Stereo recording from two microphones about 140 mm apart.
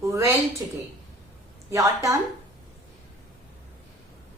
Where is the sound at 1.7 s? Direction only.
20° right (ahead or behind).